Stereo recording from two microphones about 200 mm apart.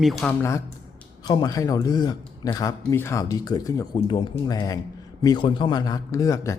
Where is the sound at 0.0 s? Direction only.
Centre (ahead or behind).